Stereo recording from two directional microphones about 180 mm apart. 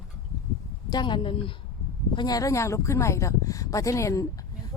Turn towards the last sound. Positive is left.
turn(degrees=20)  # may be behind; listen again after turning